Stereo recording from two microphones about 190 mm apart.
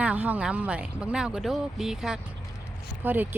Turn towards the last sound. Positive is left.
turn(degrees=-10)  # may be behind; listen again after turning